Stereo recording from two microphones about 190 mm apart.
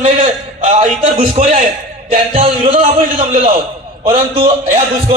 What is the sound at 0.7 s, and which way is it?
Speech, 40° right (ahead or behind).